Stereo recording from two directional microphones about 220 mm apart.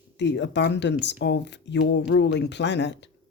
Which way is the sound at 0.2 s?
55° left (ahead or behind).